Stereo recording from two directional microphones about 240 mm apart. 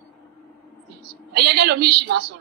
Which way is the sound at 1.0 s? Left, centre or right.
Right.